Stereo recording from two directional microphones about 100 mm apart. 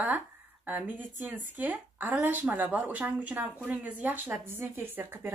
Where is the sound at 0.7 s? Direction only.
15° right (ahead or behind).